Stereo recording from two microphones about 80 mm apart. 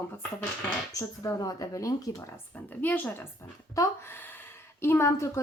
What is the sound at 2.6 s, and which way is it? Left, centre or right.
Speech, left.